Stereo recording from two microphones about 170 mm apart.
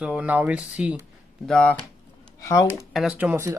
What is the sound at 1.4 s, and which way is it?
Speech, 5° left (ahead or behind).